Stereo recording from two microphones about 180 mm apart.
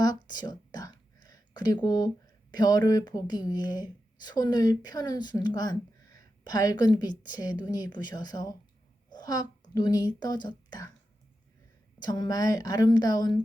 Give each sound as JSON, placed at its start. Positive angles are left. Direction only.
{"t": 0.0, "sound": "a sound", "side_deg": 20}
{"t": 2.2, "sound": "a woman's voice", "side_deg": 20}
{"t": 11.9, "sound": "a woman's voice", "side_deg": 25}